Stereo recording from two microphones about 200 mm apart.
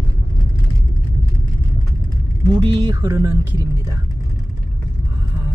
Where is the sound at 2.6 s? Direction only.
20° right (ahead or behind).